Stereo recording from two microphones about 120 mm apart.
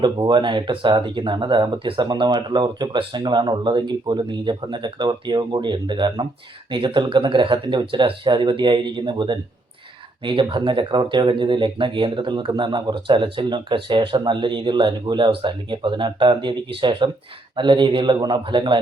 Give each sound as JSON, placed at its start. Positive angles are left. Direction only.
{"t": 0.0, "sound": "speech", "side_deg": -40}